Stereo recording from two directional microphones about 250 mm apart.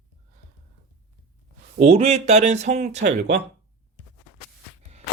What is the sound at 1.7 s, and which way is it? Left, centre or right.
Speech, right.